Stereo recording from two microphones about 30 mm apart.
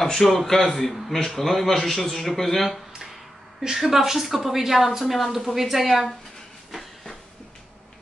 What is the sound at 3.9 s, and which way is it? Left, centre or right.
A woman's voice, centre.